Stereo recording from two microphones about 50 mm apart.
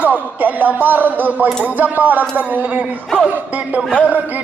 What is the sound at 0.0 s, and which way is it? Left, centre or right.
A man's voice, right.